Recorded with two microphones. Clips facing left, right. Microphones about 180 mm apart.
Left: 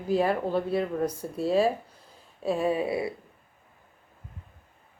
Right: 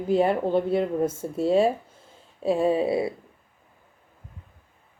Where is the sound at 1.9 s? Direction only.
25° right (ahead or behind).